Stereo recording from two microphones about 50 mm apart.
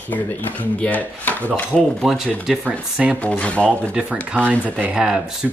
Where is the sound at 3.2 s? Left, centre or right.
Left.